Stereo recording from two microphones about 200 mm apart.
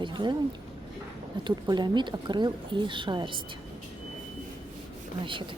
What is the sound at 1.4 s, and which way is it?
Speech, 20° right (ahead or behind).